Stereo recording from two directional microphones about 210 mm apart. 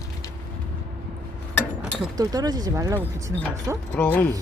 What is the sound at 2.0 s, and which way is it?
Speech, 20° right (ahead or behind).